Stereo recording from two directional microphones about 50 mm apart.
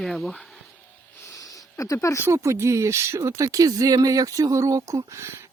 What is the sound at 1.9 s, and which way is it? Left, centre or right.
Speech, left.